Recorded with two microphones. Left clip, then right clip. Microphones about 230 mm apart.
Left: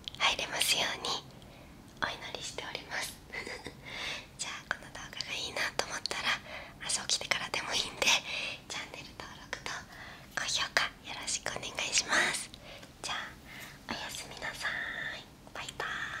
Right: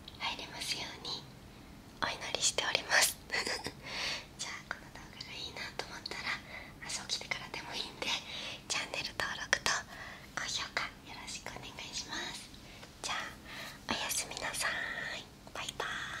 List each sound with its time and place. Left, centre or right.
0.2 s speech: left
2.0 s speech: centre
2.5 s speech: right
3.8 s a sound: centre
4.9 s whispering: left
8.3 s whispering: centre
8.9 s whispering: right
10.3 s whispering: centre; by 12.4 s left
13.0 s whispering: centre
13.6 s whispering: centre